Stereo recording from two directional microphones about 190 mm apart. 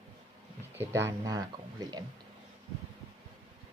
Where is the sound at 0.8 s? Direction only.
15° right (ahead or behind).